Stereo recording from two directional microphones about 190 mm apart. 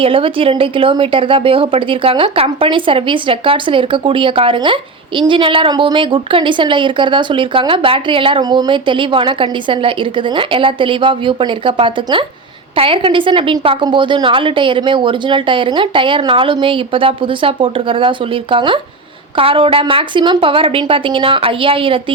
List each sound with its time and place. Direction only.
0.0 s speech: 30° right (ahead or behind)